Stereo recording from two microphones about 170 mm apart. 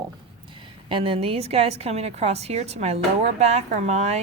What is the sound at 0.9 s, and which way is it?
Speech, 30° right (ahead or behind).